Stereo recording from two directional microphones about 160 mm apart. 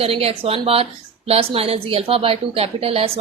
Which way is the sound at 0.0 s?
40° right (ahead or behind).